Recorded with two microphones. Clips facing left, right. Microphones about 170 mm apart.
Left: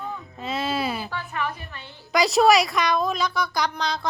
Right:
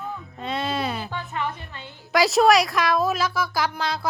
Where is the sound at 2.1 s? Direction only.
Centre (ahead or behind).